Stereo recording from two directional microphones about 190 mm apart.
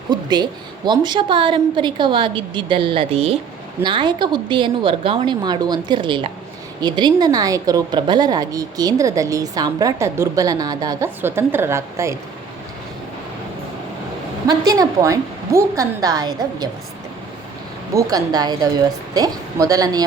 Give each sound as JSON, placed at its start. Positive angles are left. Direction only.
{"t": 0.1, "sound": "a woman's voice", "side_deg": -20}
{"t": 14.4, "sound": "a woman's voice", "side_deg": -20}
{"t": 17.9, "sound": "a woman's voice", "side_deg": -20}